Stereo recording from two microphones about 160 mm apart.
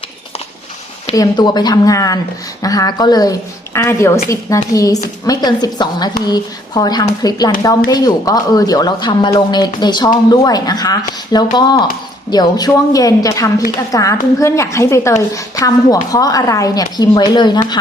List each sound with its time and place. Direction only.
1.1 s a woman's voice: 25° left (ahead or behind)